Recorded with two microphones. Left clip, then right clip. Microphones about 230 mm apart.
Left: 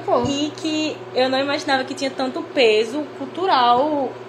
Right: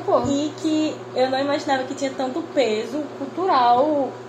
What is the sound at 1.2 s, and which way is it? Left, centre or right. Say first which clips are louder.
Speech: left 1 dB; left.